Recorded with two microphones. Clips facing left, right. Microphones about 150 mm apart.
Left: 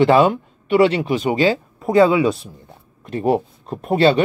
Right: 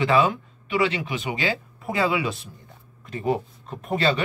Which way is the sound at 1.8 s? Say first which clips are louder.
Left 11 dB; 35° left (ahead or behind).